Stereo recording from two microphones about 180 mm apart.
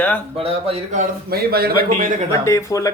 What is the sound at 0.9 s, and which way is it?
A man's voice, 60° right (ahead or behind).